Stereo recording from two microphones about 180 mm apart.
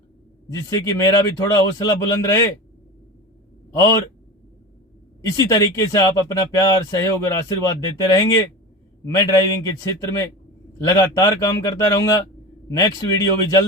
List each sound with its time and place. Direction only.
0.5 s speech: 20° left (ahead or behind)
3.7 s a man's voice: 20° left (ahead or behind)
5.2 s speech: 20° left (ahead or behind)